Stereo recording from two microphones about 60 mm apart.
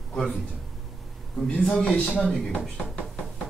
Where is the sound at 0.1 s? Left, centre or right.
Centre.